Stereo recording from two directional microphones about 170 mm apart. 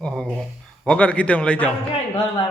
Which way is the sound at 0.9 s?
5° left (ahead or behind).